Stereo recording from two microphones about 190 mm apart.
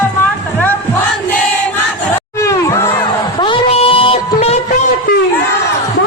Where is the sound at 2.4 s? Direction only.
15° left (ahead or behind).